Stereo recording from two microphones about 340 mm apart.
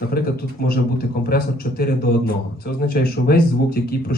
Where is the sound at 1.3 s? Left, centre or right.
Left.